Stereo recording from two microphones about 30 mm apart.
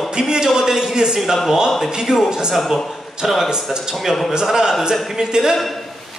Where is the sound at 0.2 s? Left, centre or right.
Centre.